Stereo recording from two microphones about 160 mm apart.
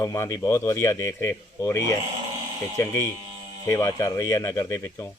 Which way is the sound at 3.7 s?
20° left (ahead or behind).